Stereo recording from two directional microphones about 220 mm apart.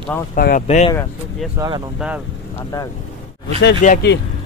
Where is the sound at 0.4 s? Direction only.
45° left (ahead or behind).